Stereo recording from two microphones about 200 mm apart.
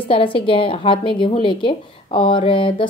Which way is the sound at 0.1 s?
25° left (ahead or behind).